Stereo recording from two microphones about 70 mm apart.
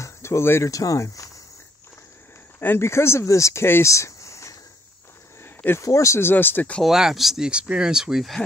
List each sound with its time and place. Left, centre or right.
0.0 s a sound: left
0.7 s speech: left
2.6 s speech: left
3.6 s speech: left
3.9 s a sound: left
5.4 s a sound: left
5.8 s speech: left
6.2 s speech: left
6.8 s speech: centre